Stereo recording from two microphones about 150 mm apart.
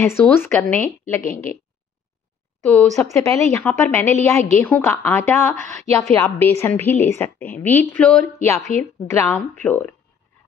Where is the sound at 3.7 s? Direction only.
5° left (ahead or behind).